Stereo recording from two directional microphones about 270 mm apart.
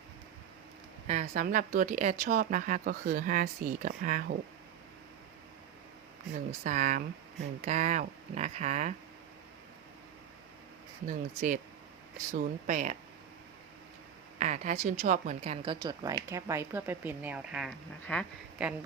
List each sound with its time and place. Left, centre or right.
1.0 s speech: right
6.7 s speech: right
11.0 s speech: right
14.3 s a woman's voice: right; by 18.7 s centre